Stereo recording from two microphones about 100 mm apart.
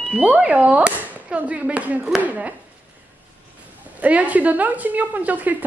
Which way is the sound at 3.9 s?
15° right (ahead or behind).